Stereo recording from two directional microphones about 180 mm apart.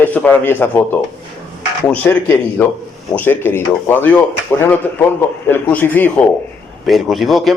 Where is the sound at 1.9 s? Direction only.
10° left (ahead or behind).